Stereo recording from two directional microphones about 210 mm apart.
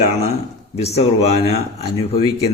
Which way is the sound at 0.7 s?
30° left (ahead or behind).